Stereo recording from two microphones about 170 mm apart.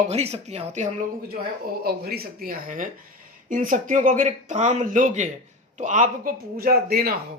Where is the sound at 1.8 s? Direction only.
65° right (ahead or behind).